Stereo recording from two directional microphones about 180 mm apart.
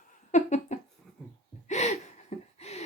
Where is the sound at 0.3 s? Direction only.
40° left (ahead or behind).